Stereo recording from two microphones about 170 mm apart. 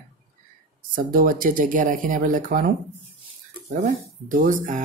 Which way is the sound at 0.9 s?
55° right (ahead or behind).